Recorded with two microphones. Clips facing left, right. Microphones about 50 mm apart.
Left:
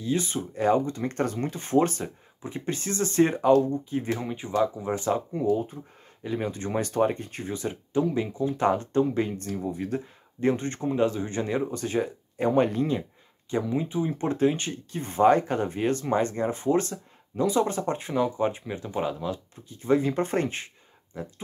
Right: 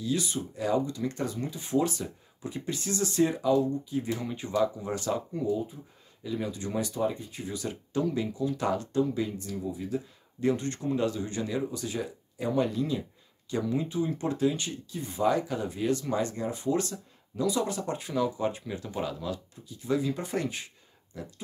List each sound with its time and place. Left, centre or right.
0.0 s speech: left
4.2 s speech: left
5.5 s speech: left
6.2 s speech: left
7.5 s speech: left
10.4 s speech: left
13.5 s speech: left